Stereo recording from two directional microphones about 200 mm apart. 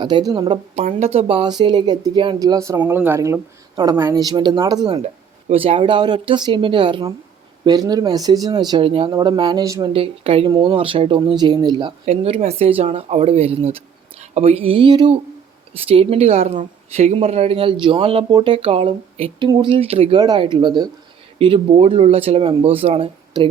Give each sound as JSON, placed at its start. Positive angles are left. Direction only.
{"t": 0.0, "sound": "speech", "side_deg": -20}
{"t": 9.9, "sound": "speech", "side_deg": -30}